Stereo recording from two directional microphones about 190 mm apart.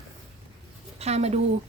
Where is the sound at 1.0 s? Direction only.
35° right (ahead or behind).